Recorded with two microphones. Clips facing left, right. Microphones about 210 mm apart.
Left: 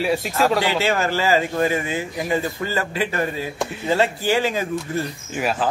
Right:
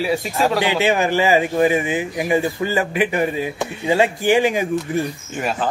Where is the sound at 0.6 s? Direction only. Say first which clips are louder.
Right 3 dB; 15° right (ahead or behind).